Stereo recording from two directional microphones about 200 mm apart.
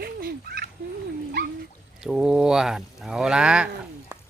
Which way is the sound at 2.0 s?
5° right (ahead or behind).